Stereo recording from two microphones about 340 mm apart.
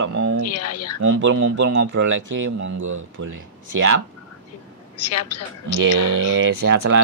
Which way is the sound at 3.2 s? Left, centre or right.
Right.